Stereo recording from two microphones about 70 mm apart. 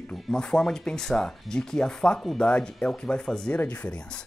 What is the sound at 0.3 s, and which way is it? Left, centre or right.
Speech, centre.